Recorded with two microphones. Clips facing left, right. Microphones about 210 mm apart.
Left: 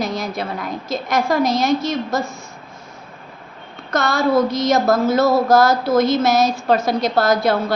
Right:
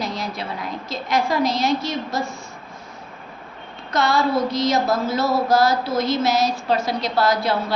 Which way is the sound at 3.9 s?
45° left (ahead or behind).